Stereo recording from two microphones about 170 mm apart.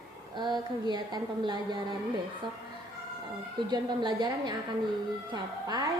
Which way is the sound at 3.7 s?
25° right (ahead or behind).